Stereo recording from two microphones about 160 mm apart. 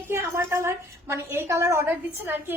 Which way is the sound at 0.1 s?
15° right (ahead or behind).